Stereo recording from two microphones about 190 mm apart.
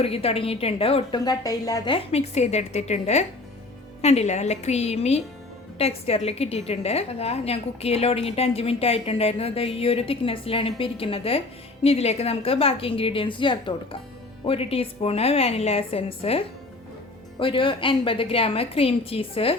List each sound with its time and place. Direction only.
0.0 s a woman's voice: 30° left (ahead or behind)
17.4 s a woman's voice: 25° left (ahead or behind)